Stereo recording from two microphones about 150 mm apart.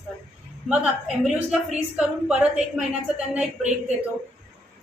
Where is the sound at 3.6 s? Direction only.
50° right (ahead or behind).